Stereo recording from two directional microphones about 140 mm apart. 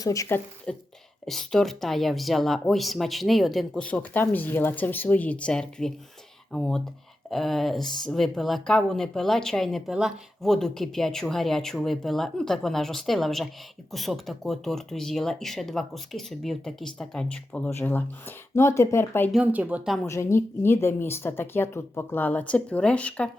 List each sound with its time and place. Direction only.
0.0 s speech: 25° left (ahead or behind)
19.3 s speech: 10° right (ahead or behind)
20.1 s speech: 20° left (ahead or behind)